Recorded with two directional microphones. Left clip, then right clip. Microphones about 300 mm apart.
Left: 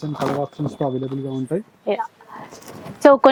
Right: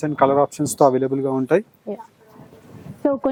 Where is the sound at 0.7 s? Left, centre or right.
Centre.